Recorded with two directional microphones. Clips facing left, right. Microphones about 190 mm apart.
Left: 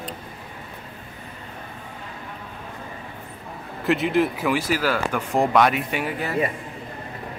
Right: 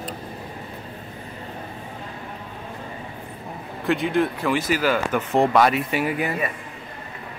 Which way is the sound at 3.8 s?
Centre (ahead or behind).